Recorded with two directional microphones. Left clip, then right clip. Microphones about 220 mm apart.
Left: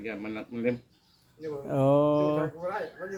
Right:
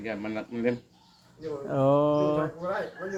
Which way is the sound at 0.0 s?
5° right (ahead or behind).